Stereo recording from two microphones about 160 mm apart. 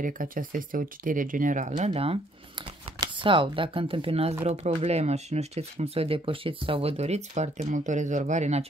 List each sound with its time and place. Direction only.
0.0 s speech: 60° right (ahead or behind); by 2.1 s 40° right (ahead or behind)
3.2 s speech: 30° right (ahead or behind)